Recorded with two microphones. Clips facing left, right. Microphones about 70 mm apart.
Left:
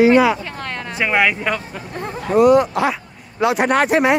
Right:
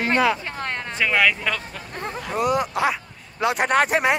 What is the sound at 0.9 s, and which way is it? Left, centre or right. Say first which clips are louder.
Speech: left 3 dB; centre.